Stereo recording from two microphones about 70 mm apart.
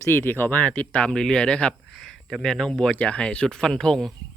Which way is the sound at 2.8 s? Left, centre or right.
Centre.